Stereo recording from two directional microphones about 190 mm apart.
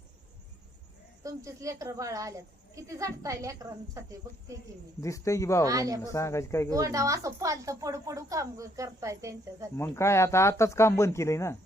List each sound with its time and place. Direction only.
1.2 s speech: 15° right (ahead or behind)
4.9 s speech: 15° left (ahead or behind)
5.6 s speech: 20° right (ahead or behind)
6.0 s speech: 15° left (ahead or behind)
6.7 s speech: 15° right (ahead or behind)
9.7 s speech: 15° left (ahead or behind)